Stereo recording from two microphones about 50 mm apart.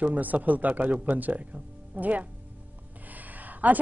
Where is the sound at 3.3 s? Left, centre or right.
Right.